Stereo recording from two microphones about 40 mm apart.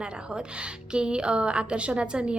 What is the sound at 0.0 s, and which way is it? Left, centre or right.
A woman's voice, right.